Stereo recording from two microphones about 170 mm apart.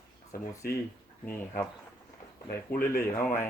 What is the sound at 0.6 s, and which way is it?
Speech, 65° left (ahead or behind).